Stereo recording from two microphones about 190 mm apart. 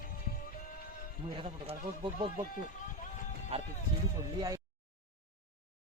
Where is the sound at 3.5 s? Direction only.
30° right (ahead or behind).